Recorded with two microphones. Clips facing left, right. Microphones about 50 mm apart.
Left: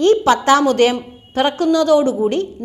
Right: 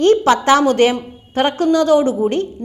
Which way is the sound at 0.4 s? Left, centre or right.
Right.